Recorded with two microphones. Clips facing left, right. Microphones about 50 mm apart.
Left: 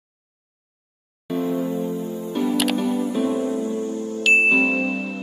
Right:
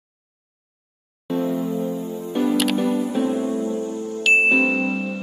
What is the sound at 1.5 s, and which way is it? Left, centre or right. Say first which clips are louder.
Music: even; left.